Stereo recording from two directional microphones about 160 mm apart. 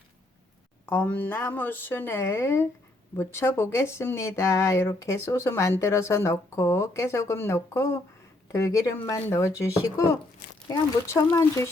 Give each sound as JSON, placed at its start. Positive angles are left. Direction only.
{"t": 0.9, "sound": "speech", "side_deg": 10}